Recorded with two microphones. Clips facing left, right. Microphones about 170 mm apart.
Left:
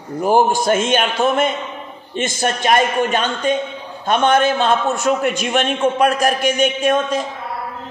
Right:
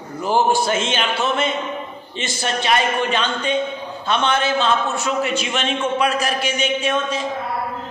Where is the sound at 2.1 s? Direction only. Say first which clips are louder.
Left 5 dB; 50° left (ahead or behind).